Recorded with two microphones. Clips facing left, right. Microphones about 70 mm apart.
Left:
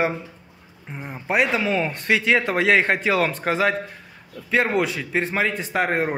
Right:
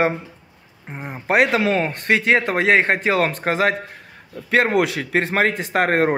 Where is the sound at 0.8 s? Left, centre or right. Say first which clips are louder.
Right 2 dB; right.